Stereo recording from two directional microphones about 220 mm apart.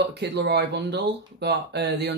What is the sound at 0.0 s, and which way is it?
Speech, 50° right (ahead or behind).